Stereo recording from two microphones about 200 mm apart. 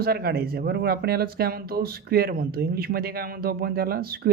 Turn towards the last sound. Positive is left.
turn(degrees=-50)  # may be behind; listen again after turning